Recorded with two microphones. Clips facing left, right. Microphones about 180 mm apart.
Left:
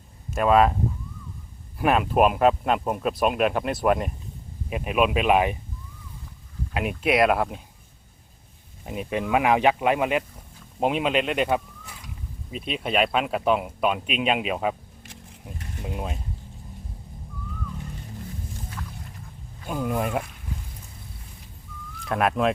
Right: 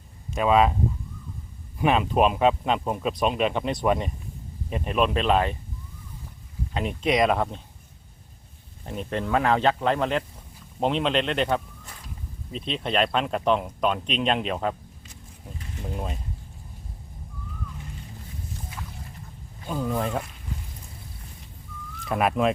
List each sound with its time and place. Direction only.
0.3 s speech: centre (ahead or behind)
1.8 s speech: 5° left (ahead or behind)
6.7 s speech: 5° left (ahead or behind)
8.8 s speech: 10° left (ahead or behind)
15.4 s a sound: 10° left (ahead or behind)
19.6 s speech: 10° left (ahead or behind)
22.0 s speech: centre (ahead or behind)